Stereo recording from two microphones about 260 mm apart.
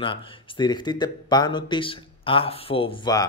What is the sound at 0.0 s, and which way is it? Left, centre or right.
Speech, centre.